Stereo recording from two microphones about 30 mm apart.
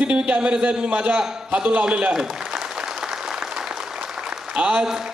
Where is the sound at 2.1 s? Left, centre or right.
Right.